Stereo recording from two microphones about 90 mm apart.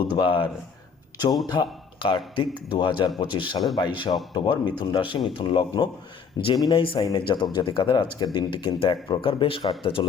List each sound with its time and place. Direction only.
0.0 s a man's voice: 70° left (ahead or behind)
3.8 s a man's voice: 50° left (ahead or behind); by 7.0 s 75° left (ahead or behind)
7.3 s a man's voice: 60° left (ahead or behind)
8.5 s speech: 70° left (ahead or behind)